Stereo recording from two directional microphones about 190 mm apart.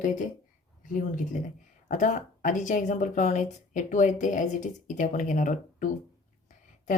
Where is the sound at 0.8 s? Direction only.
45° left (ahead or behind).